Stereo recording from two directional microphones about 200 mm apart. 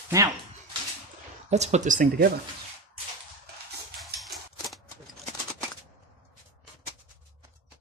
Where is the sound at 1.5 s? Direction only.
35° right (ahead or behind).